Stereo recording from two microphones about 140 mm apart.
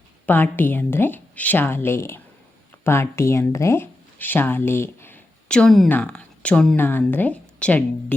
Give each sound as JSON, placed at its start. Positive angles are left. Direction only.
{"t": 0.3, "sound": "a woman's voice", "side_deg": 15}